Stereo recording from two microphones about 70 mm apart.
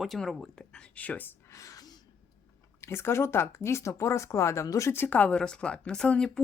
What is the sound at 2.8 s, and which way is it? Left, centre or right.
Speech, left.